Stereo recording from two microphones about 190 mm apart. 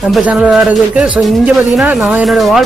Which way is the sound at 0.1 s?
5° right (ahead or behind).